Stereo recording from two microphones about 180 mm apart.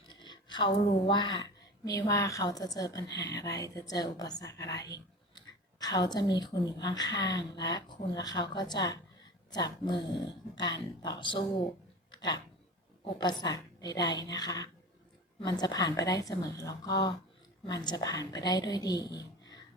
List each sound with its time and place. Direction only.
0.1 s speech: 25° left (ahead or behind)
12.1 s a sound: 25° left (ahead or behind)
13.1 s speech: 25° left (ahead or behind)